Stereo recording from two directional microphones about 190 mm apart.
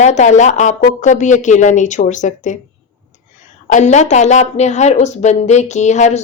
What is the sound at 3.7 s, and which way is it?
Speech, 40° left (ahead or behind).